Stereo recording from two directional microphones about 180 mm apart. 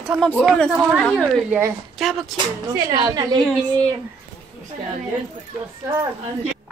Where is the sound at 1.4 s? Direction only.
10° right (ahead or behind).